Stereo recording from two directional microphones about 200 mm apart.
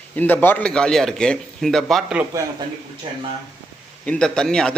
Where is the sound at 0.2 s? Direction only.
10° left (ahead or behind).